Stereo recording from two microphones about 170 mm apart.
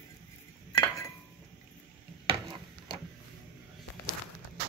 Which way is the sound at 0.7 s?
20° left (ahead or behind).